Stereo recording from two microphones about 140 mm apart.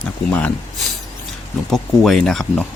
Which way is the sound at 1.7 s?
Centre (ahead or behind).